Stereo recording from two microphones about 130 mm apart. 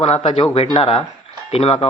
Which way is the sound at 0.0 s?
50° left (ahead or behind).